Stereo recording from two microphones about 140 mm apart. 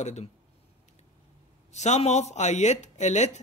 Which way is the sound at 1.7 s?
55° left (ahead or behind).